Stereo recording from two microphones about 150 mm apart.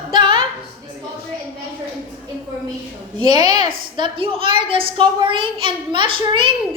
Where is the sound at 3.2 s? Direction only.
30° right (ahead or behind).